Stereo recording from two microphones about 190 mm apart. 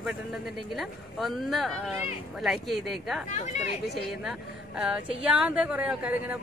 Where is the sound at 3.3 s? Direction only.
35° left (ahead or behind).